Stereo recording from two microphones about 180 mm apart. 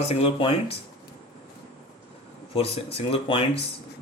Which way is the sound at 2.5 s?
30° left (ahead or behind).